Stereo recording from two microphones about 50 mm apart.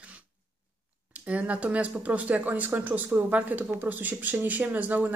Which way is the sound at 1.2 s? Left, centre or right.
Right.